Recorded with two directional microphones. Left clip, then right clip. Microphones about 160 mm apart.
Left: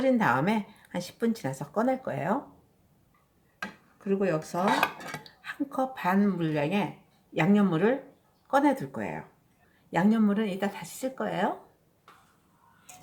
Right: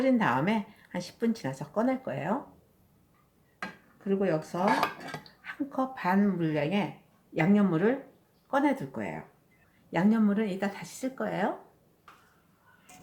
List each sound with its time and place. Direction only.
0.0 s speech: 20° left (ahead or behind)
4.0 s speech: 10° left (ahead or behind)
4.7 s cutlery: 15° right (ahead or behind)
5.4 s speech: 5° left (ahead or behind)